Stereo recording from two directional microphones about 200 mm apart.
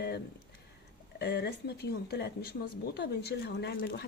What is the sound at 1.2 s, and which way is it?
Speech, 55° left (ahead or behind).